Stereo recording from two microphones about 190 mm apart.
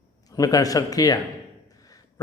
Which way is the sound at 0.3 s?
20° left (ahead or behind).